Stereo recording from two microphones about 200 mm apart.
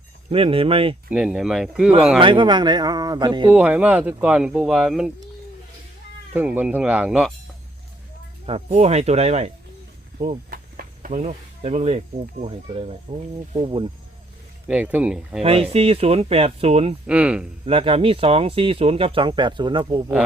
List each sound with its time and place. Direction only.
0.3 s speech: 30° right (ahead or behind)
1.1 s speech: 5° right (ahead or behind)
2.2 s speech: 25° right (ahead or behind)
3.5 s speech: 5° right (ahead or behind)
6.3 s speech: 10° right (ahead or behind)
8.4 s speech: 30° right (ahead or behind)
10.5 s speech: 45° right (ahead or behind); by 13.9 s 25° right (ahead or behind)
14.7 s speech: 5° right (ahead or behind)
15.4 s speech: 30° right (ahead or behind)
17.1 s speech: 5° right (ahead or behind)
17.7 s speech: 25° right (ahead or behind)